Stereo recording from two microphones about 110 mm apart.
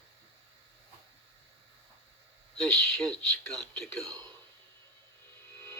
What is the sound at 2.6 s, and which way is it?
Speech, 5° left (ahead or behind).